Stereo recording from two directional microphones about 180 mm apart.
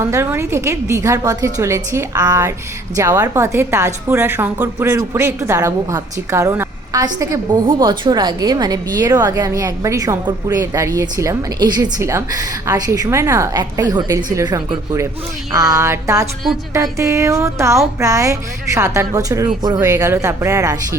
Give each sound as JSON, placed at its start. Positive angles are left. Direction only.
{"t": 0.0, "sound": "a woman's voice", "side_deg": -15}